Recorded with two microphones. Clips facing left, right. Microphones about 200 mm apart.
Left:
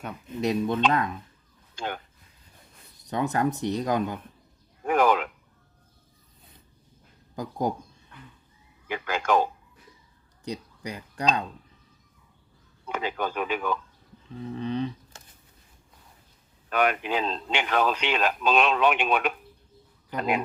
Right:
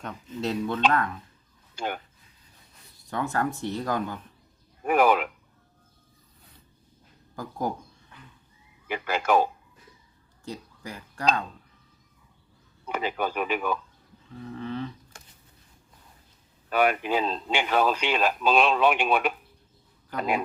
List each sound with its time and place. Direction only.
0.3 s speech: 15° left (ahead or behind)
1.7 s speech: 10° right (ahead or behind)
3.0 s speech: 20° left (ahead or behind)
4.8 s a sound: 10° right (ahead or behind)
7.6 s speech: 15° left (ahead or behind)
8.9 s speech: 10° right (ahead or behind)
10.4 s speech: 20° left (ahead or behind)
12.8 s speech: 10° right (ahead or behind)
14.4 s speech: 20° left (ahead or behind)
16.6 s speech: 5° right (ahead or behind)